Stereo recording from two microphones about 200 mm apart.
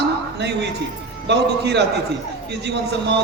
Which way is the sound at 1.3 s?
55° right (ahead or behind).